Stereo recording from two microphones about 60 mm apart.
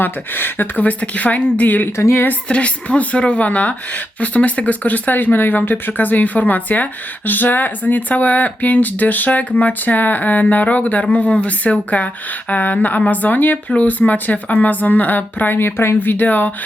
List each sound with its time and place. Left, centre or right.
0.0 s speech: left
2.0 s speech: left
2.5 s speech: left